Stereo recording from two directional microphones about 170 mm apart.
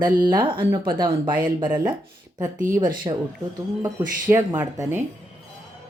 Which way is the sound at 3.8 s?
15° right (ahead or behind).